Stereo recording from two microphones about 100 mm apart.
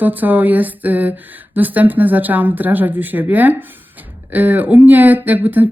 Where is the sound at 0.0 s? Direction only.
15° right (ahead or behind).